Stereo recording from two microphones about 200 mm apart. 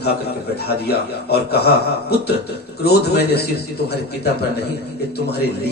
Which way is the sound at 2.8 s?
55° left (ahead or behind).